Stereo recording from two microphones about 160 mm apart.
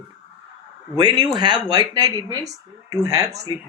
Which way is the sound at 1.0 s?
25° right (ahead or behind).